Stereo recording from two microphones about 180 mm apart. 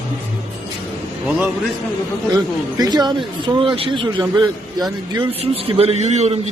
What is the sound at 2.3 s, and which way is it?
A man's voice, 20° right (ahead or behind).